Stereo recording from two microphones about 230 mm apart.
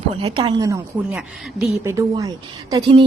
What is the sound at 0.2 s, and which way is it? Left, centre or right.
Speech, right.